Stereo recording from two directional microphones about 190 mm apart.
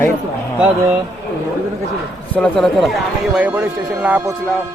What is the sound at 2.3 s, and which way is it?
Speech, 5° left (ahead or behind).